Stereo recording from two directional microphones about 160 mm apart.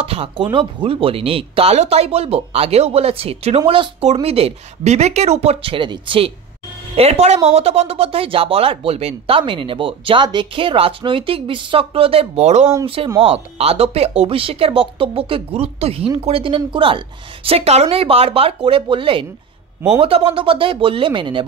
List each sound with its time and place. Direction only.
0.0 s speech: 35° right (ahead or behind)